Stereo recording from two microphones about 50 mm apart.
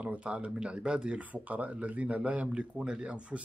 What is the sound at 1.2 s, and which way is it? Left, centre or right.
A man's voice, right.